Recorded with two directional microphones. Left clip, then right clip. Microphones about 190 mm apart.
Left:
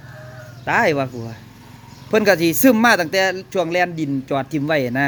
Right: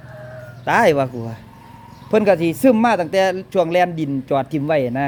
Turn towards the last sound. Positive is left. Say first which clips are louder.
# right 1 dB
turn(degrees=-5)  # may be behind; listen again after turning